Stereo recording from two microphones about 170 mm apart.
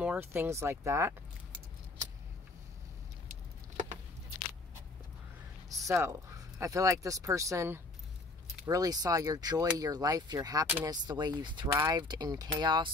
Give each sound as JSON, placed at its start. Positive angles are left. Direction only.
{"t": 0.0, "sound": "speech", "side_deg": -10}
{"t": 3.3, "sound": "vehicle", "side_deg": -45}
{"t": 5.7, "sound": "speech", "side_deg": -20}